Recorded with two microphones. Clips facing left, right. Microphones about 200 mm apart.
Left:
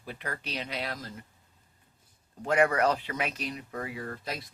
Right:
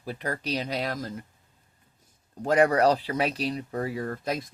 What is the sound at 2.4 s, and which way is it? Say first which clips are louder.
Speech: right 4 dB; 35° right (ahead or behind).